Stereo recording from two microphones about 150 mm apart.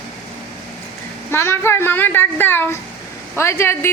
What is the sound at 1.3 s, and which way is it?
A woman's voice, 15° left (ahead or behind).